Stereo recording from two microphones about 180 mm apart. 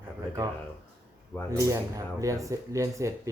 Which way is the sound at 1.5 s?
20° right (ahead or behind).